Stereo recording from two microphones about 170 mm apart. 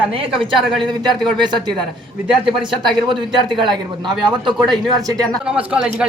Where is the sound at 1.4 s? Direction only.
25° right (ahead or behind).